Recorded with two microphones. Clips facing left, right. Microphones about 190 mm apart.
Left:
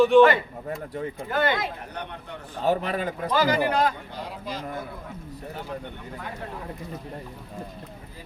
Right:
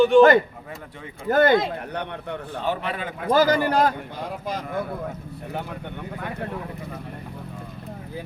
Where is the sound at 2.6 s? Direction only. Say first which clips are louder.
Left 4 dB; 40° left (ahead or behind).